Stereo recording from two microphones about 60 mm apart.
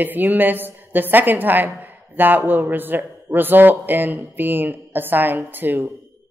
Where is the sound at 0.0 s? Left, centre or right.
Right.